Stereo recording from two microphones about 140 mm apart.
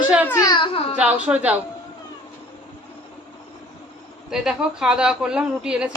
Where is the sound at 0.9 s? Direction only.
10° right (ahead or behind).